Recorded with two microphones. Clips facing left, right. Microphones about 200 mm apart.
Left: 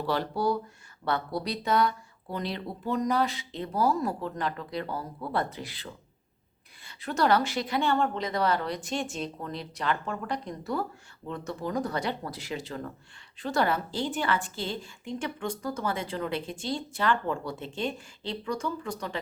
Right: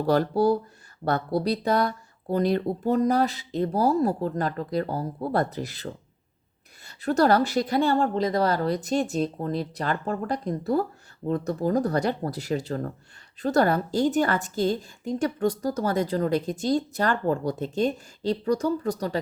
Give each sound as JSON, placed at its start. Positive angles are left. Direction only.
{"t": 0.0, "sound": "a woman's voice", "side_deg": -45}